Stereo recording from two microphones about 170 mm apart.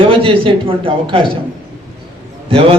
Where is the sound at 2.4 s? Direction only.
35° right (ahead or behind).